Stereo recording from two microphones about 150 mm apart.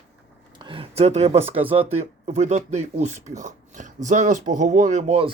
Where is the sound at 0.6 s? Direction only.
35° right (ahead or behind); by 5.2 s 55° right (ahead or behind).